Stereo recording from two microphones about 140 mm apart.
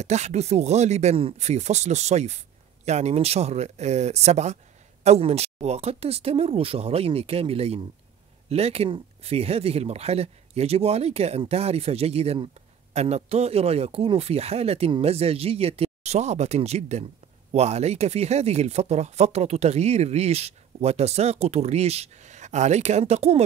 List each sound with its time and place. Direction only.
0.0 s speech: 55° right (ahead or behind)